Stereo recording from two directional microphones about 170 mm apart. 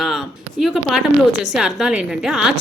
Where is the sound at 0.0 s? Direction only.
Centre (ahead or behind).